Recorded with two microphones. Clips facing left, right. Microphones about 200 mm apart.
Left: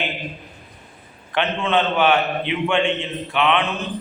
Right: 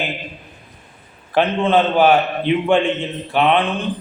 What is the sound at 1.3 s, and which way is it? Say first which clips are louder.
Mantra: right 5 dB; 35° right (ahead or behind).